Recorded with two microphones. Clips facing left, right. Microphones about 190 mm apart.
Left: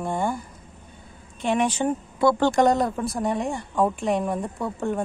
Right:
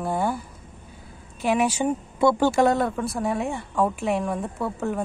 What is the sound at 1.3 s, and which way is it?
A woman's voice, 5° right (ahead or behind).